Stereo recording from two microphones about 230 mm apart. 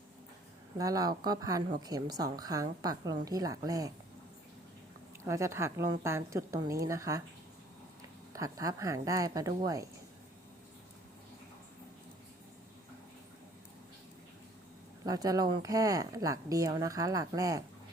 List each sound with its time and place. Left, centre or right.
0.8 s a woman's voice: centre
5.2 s a woman's voice: centre
8.3 s a woman's voice: centre
15.0 s a woman's voice: centre